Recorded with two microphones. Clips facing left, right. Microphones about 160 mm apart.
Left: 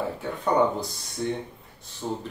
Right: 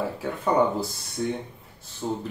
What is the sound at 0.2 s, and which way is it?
Speech, centre (ahead or behind).